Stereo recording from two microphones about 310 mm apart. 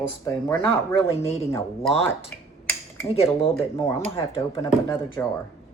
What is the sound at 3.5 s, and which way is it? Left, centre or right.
Speech, centre.